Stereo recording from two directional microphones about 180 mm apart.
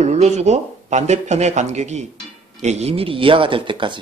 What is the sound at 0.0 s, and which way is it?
Speech, 40° right (ahead or behind).